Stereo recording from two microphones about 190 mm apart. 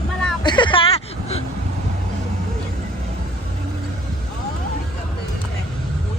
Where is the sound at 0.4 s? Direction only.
25° left (ahead or behind).